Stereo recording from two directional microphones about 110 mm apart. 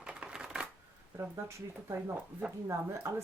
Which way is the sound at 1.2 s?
25° right (ahead or behind).